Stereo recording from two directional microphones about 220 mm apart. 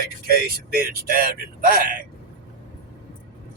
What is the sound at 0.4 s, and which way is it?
Speech, 40° right (ahead or behind).